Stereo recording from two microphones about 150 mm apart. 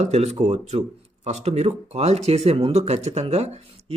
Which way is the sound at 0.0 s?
45° right (ahead or behind).